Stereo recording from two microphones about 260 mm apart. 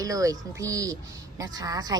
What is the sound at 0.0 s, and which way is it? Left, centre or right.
A woman's voice, centre.